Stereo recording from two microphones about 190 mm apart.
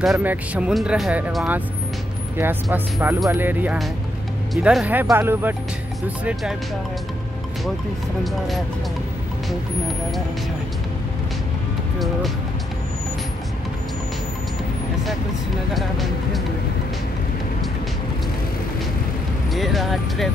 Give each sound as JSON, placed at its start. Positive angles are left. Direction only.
{"t": 0.0, "sound": "speech", "side_deg": -5}
{"t": 19.5, "sound": "speech", "side_deg": 0}